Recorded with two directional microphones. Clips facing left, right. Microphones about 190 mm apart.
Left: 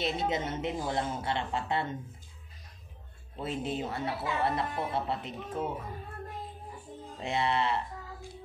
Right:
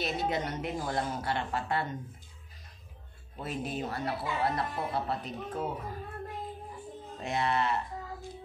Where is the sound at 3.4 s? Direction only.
25° left (ahead or behind).